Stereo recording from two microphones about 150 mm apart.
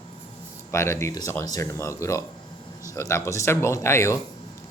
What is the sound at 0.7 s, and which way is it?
Speech, 20° left (ahead or behind).